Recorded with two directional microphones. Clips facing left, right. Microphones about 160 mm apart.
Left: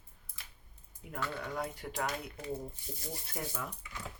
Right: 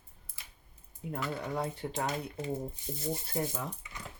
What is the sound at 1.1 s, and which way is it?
Speech, 30° right (ahead or behind).